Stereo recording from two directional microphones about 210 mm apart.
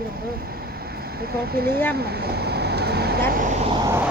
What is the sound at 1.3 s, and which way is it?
Speech, 45° right (ahead or behind).